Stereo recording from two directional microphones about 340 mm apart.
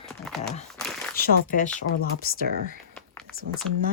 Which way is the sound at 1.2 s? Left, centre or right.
Left.